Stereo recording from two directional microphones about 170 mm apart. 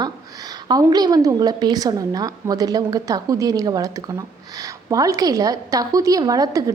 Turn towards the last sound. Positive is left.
turn(degrees=-20)  # may be behind; listen again after turning